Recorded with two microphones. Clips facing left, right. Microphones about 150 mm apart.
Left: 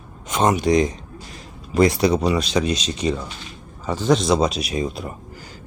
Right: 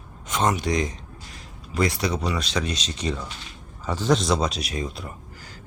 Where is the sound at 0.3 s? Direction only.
15° left (ahead or behind).